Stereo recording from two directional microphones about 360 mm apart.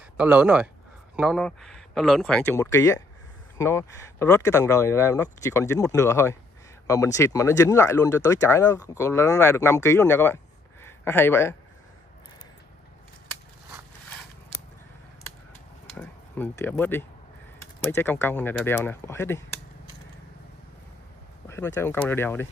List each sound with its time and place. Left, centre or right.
0.2 s speech: centre
15.9 s a sound: centre
17.6 s speech: centre
21.5 s speech: centre